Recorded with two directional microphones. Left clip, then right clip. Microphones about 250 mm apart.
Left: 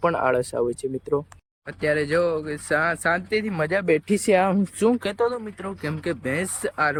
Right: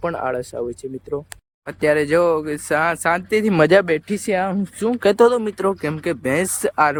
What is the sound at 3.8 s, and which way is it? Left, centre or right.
Speech, centre.